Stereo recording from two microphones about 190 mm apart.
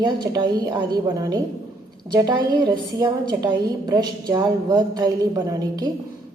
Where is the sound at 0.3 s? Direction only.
20° right (ahead or behind).